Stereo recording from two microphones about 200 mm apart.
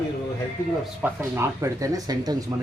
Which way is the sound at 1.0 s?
15° right (ahead or behind).